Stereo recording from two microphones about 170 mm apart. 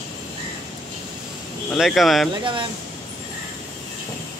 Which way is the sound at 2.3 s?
25° right (ahead or behind).